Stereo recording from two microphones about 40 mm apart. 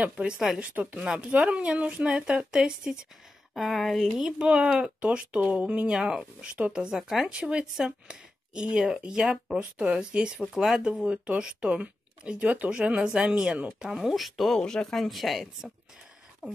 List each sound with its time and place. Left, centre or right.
0.2 s speech: right
1.3 s speech: right
2.1 s speech: right
3.5 s speech: centre
4.6 s speech: centre
5.0 s speech: right
5.9 s speech: centre
7.2 s speech: right
10.4 s speech: centre
11.1 s speech: right
13.8 s speech: centre
14.6 s speech: centre
15.0 s speech: centre
16.4 s a sound: centre